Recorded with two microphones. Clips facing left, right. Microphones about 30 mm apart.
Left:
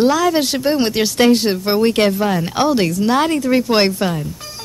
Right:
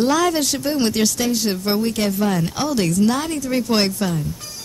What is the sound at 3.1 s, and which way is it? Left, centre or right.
Speech, left.